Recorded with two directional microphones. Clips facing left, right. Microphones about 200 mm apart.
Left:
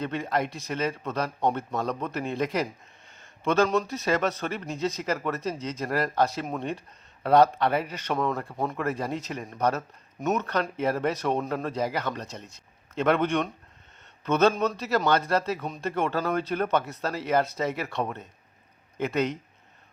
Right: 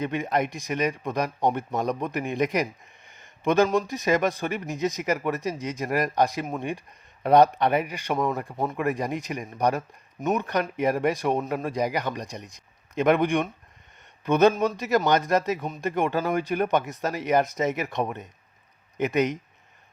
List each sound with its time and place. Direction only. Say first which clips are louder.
0.0 s speech: right 2 dB; 15° right (ahead or behind)